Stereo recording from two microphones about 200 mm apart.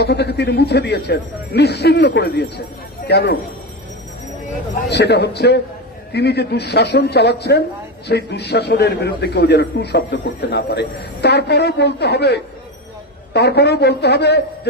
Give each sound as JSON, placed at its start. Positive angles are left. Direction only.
{"t": 0.0, "sound": "a man's voice", "side_deg": 55}
{"t": 4.9, "sound": "a man's voice", "side_deg": 55}